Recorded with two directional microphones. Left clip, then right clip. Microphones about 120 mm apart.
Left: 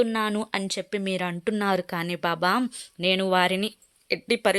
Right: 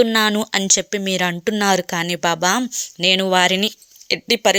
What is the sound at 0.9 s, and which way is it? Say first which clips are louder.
Speech: right 8 dB; 15° right (ahead or behind).